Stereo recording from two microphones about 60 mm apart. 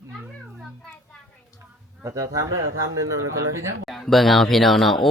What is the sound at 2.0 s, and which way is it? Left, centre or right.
Speech, right.